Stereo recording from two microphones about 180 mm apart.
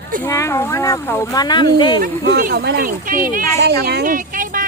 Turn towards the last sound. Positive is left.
turn(degrees=-50)  # may be behind; listen again after turning